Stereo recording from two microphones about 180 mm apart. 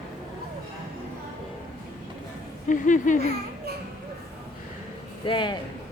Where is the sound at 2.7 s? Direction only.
45° left (ahead or behind).